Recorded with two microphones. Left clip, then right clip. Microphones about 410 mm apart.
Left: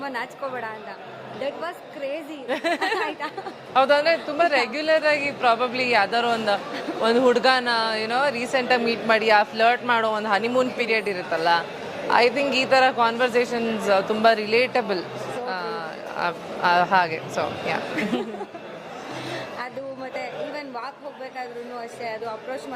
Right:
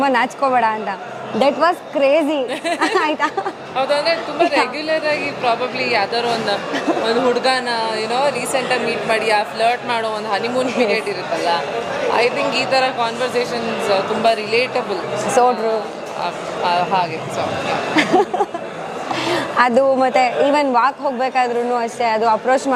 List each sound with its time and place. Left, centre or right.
0.0 s speech: right
3.8 s a woman's voice: left
7.0 s a woman's voice: left
12.1 s a woman's voice: left
15.4 s speech: right
16.2 s a woman's voice: left
19.5 s speech: right